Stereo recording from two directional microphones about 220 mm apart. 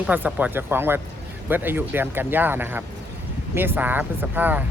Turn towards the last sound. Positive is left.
turn(degrees=-10)  # may be behind; listen again after turning